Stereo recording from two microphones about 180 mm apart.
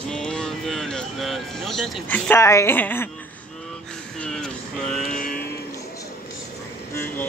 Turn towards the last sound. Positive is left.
turn(degrees=10)  # may be behind; listen again after turning